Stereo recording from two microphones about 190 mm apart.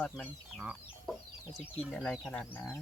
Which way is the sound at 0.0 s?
Centre (ahead or behind).